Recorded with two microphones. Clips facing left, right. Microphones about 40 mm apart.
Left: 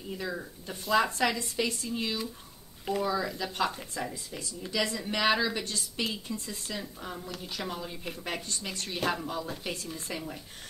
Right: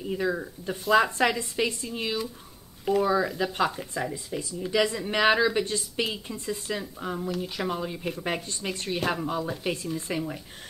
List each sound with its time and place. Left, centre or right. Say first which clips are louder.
0.1 s speech: right 7 dB; centre
2.8 s speech: right 6 dB; centre